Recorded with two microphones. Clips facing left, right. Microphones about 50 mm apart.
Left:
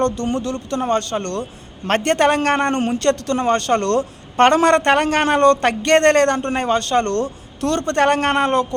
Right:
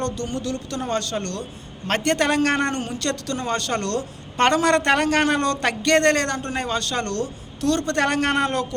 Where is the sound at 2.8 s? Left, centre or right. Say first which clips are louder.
Left 8 dB; left.